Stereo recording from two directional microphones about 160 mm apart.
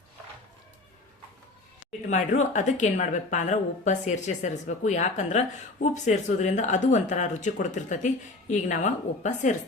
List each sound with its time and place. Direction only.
2.0 s speech: 50° left (ahead or behind)